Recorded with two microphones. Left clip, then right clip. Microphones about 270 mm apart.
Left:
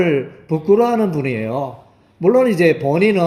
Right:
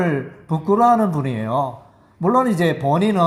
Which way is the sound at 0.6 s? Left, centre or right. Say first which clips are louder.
Even; right.